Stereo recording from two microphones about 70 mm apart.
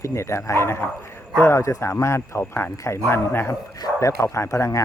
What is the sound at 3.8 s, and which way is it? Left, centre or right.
A man's voice, left.